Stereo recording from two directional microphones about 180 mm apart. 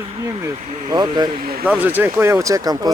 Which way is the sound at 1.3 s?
55° right (ahead or behind).